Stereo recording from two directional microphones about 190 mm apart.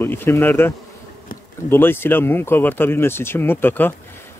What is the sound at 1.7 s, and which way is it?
Speech, 10° left (ahead or behind).